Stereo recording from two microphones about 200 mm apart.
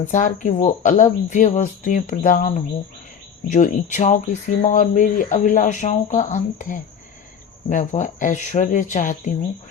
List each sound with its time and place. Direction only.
0.1 s speech: 40° left (ahead or behind)